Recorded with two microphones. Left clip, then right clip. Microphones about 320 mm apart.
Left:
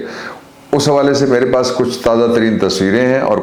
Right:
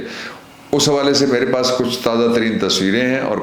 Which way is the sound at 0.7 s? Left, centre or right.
Left.